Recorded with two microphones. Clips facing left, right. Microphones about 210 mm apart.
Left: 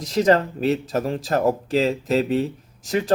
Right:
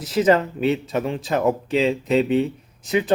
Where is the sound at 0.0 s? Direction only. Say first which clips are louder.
Even; centre (ahead or behind).